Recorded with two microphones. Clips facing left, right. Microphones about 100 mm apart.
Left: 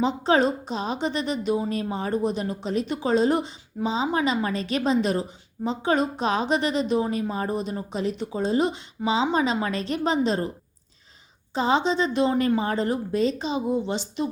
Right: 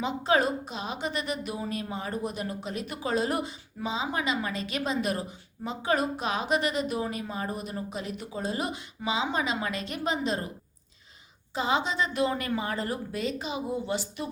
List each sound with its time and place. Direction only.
0.0 s a woman's voice: 30° left (ahead or behind)
11.5 s a woman's voice: 30° left (ahead or behind)